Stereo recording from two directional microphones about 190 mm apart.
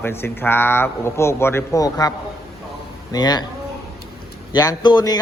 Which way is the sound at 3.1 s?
20° left (ahead or behind).